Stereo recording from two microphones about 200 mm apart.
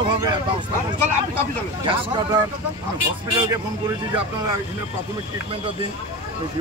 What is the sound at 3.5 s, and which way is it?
Speech, 20° right (ahead or behind).